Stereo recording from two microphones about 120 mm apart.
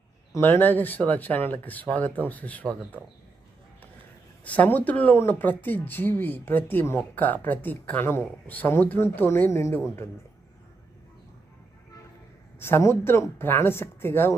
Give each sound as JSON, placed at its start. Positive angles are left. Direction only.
{"t": 0.3, "sound": "speech", "side_deg": 15}
{"t": 4.4, "sound": "speech", "side_deg": 10}
{"t": 12.5, "sound": "speech", "side_deg": 20}